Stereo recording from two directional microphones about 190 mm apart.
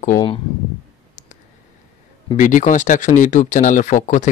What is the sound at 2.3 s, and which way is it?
Speech, 40° left (ahead or behind).